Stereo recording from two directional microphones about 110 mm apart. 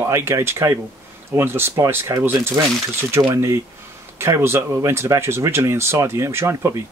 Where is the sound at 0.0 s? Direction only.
25° right (ahead or behind).